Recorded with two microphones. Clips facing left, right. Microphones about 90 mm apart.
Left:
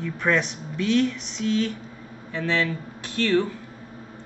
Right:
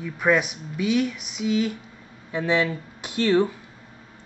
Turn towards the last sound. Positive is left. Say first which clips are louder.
# right 2 dB
turn(degrees=-15)  # may be behind; listen again after turning